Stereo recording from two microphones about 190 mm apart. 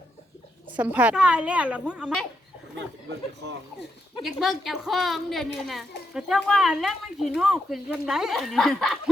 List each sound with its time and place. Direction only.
0.8 s speech: 5° right (ahead or behind)
4.2 s speech: centre (ahead or behind)